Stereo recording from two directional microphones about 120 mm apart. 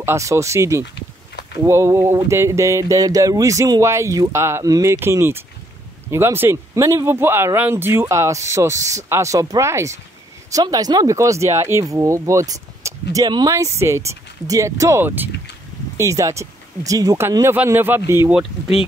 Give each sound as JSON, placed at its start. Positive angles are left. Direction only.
{"t": 0.0, "sound": "speech", "side_deg": -25}